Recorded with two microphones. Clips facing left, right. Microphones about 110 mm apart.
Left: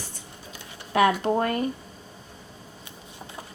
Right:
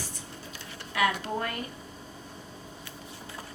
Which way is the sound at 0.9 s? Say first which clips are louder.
Left 7 dB; 35° left (ahead or behind).